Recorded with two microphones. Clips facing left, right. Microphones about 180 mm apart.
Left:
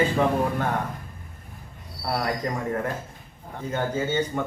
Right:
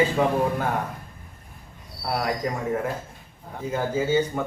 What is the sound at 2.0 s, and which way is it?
A man's voice, centre (ahead or behind).